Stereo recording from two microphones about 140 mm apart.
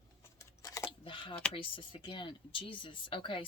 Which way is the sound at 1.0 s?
35° left (ahead or behind).